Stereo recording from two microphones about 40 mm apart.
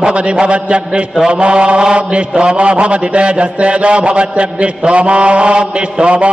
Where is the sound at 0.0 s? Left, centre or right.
Right.